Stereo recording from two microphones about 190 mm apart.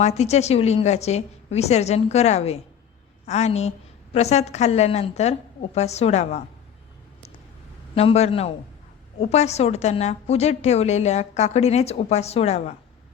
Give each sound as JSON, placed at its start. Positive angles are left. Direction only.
{"t": 0.0, "sound": "a woman's voice", "side_deg": 35}
{"t": 7.9, "sound": "a woman's voice", "side_deg": 35}